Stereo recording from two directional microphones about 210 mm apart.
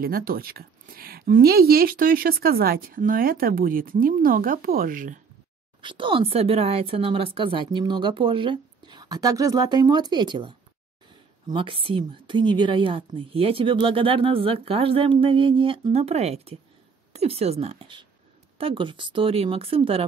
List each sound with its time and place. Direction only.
0.0 s speech: 45° right (ahead or behind)
5.8 s a woman's voice: 25° right (ahead or behind)